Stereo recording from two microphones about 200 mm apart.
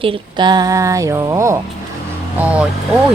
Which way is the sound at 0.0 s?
25° right (ahead or behind).